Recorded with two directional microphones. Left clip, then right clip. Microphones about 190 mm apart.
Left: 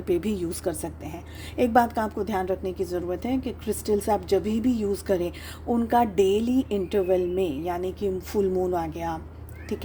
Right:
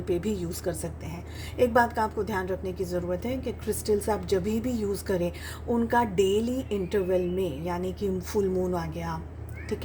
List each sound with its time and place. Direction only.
0.1 s a woman's voice: 40° left (ahead or behind)